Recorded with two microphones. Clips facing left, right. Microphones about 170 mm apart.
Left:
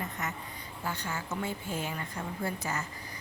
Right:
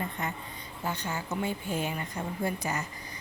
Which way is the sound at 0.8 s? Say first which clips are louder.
Right 3 dB; 20° right (ahead or behind).